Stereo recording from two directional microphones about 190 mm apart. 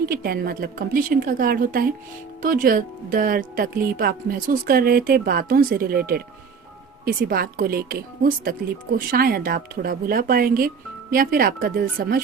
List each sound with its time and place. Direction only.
0.0 s speech: 50° right (ahead or behind)